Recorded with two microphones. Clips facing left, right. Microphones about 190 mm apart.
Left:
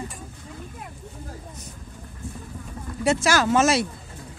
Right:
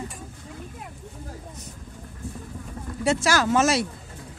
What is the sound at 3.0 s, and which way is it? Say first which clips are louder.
Speech: left 1 dB; 20° left (ahead or behind).